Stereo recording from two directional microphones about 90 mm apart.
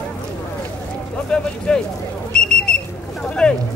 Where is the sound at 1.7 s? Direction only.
10° left (ahead or behind).